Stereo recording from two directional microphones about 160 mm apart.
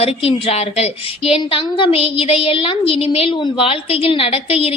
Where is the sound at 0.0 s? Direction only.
40° left (ahead or behind).